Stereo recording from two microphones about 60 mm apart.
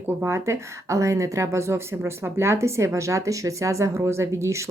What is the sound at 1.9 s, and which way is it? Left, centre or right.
A woman's voice, right.